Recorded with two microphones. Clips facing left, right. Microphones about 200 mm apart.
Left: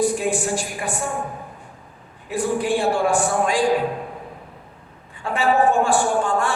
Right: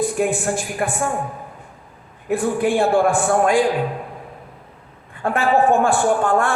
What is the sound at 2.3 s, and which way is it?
A man's voice, 55° right (ahead or behind).